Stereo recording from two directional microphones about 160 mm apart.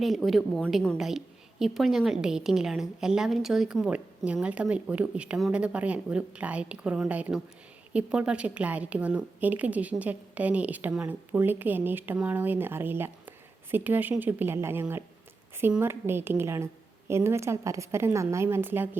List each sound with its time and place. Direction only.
0.0 s a woman's voice: centre (ahead or behind)